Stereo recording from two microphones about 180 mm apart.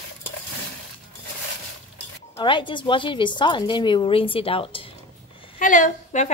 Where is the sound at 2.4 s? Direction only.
25° left (ahead or behind).